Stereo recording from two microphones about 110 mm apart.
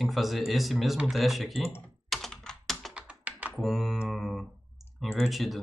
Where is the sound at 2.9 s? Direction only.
15° right (ahead or behind).